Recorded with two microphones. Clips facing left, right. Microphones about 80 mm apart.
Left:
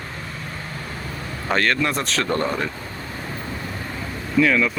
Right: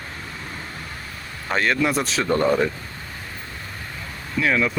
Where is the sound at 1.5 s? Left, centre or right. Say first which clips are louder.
Even; centre.